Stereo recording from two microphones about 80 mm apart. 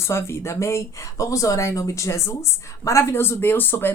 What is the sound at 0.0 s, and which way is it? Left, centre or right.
Speech, left.